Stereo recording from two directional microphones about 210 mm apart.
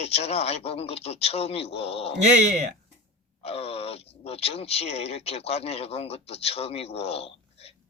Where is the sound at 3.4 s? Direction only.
30° left (ahead or behind).